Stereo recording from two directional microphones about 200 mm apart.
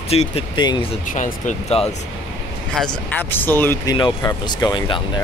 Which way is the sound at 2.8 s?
5° left (ahead or behind).